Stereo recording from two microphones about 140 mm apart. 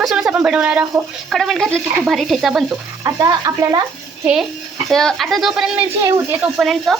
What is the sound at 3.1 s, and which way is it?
Speech, 25° right (ahead or behind).